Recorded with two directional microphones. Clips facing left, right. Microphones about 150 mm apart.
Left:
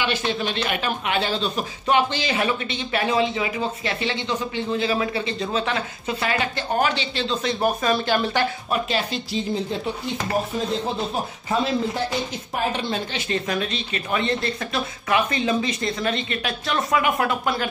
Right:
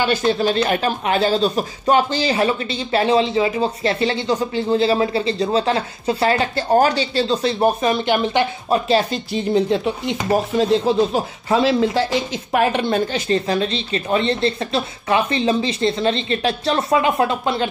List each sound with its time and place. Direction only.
0.0 s speech: 40° right (ahead or behind)
7.6 s speech: 20° right (ahead or behind)
8.7 s speech: 35° right (ahead or behind)
9.3 s speech: 75° right (ahead or behind)
11.1 s a woman's voice: 90° right; by 13.2 s 55° right (ahead or behind)
13.3 s speech: 30° right (ahead or behind)